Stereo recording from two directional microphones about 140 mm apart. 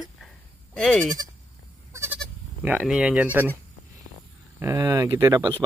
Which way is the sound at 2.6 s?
10° right (ahead or behind).